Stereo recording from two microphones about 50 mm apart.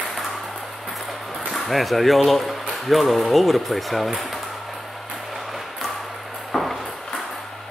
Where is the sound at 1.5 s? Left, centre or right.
Centre.